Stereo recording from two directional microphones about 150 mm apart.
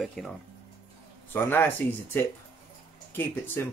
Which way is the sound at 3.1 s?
15° left (ahead or behind).